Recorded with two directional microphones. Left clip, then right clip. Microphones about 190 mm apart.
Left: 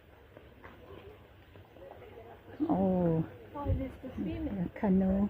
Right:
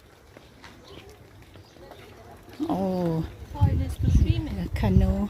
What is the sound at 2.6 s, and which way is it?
Speech, 35° right (ahead or behind).